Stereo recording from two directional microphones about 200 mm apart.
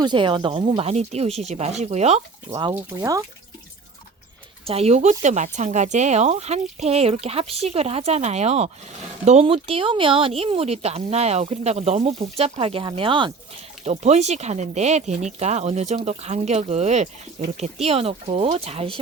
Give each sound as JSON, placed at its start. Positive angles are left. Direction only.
{"t": 0.0, "sound": "speech", "side_deg": -25}
{"t": 2.5, "sound": "speech", "side_deg": -15}
{"t": 4.6, "sound": "speech", "side_deg": -30}